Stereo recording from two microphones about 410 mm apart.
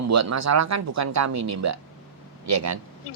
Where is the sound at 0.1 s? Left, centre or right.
Right.